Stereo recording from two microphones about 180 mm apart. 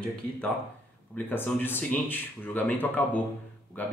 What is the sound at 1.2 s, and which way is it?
Speech, 10° left (ahead or behind).